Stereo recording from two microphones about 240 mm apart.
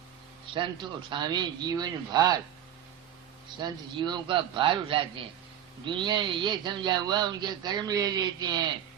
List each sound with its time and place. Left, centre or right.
0.5 s speech: centre
3.6 s a man's voice: centre